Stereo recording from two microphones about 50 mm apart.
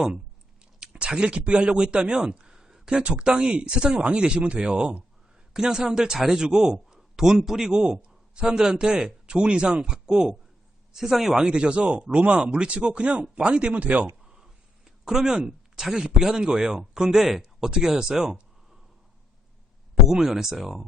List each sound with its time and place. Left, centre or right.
0.6 s a man's voice: centre
11.4 s speech: centre
14.3 s speech: centre
20.1 s a man's voice: centre